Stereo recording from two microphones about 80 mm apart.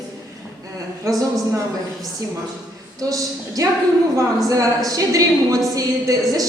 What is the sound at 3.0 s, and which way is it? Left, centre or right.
Speech, right.